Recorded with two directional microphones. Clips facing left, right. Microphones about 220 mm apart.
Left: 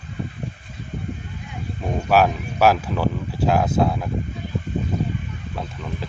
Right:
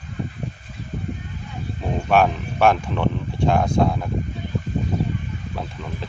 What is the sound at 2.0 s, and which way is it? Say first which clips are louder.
Speech: even; 5° left (ahead or behind).